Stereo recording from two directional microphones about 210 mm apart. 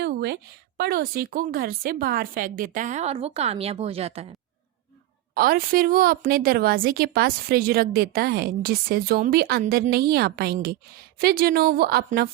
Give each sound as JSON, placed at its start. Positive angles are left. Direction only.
{"t": 0.0, "sound": "a sound", "side_deg": -50}
{"t": 0.8, "sound": "a woman's voice", "side_deg": -45}
{"t": 5.3, "sound": "a woman's voice", "side_deg": -45}